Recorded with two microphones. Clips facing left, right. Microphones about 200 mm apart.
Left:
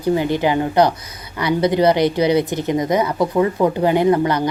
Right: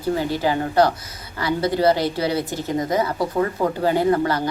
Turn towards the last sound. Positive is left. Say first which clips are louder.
# left 3 dB
turn(degrees=20)  # may be behind; listen again after turning